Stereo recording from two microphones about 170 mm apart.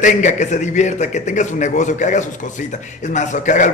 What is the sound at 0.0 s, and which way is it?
A man's voice, 45° left (ahead or behind).